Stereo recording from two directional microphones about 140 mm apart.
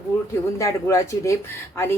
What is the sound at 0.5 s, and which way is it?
Speech, 20° left (ahead or behind).